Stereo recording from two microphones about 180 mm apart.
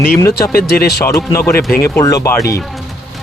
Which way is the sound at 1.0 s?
15° left (ahead or behind).